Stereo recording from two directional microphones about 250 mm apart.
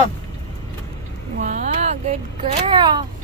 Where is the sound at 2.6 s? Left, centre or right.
Centre.